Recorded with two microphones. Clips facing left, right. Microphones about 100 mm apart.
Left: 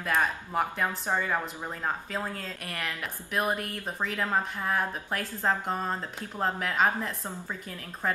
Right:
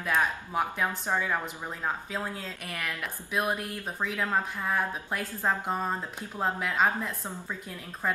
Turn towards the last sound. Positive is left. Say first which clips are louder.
# even
turn(degrees=0)  # may be behind; listen again after turning